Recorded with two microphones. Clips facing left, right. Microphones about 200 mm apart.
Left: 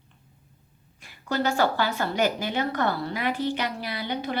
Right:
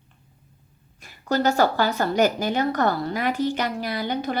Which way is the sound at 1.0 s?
40° right (ahead or behind).